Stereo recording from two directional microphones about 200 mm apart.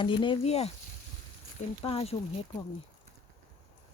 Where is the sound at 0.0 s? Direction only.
25° left (ahead or behind).